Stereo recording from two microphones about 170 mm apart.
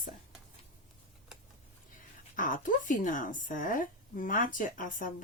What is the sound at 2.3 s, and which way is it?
A woman's voice, 50° left (ahead or behind).